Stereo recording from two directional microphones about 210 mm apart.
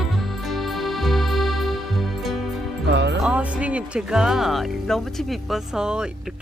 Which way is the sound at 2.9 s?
55° right (ahead or behind).